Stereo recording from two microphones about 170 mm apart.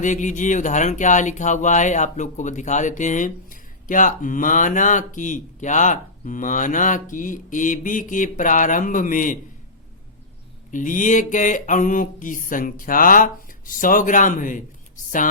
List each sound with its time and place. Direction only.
0.0 s speech: 45° left (ahead or behind)
10.7 s speech: 50° left (ahead or behind)